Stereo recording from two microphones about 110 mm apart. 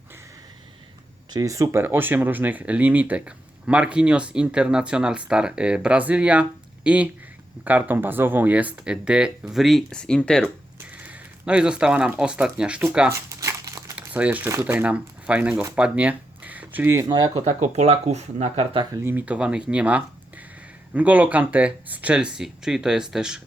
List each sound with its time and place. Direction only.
1.3 s speech: 30° right (ahead or behind)
1.8 s speech: 20° right (ahead or behind); by 10.4 s 5° left (ahead or behind)
11.0 s speech: 10° right (ahead or behind)
13.1 s crumpling: 30° right (ahead or behind)
13.9 s crumpling: 10° right (ahead or behind)
14.6 s speech: 15° right (ahead or behind)
17.1 s speech: 40° right (ahead or behind)
17.4 s speech: 80° right
19.0 s speech: 15° right (ahead or behind)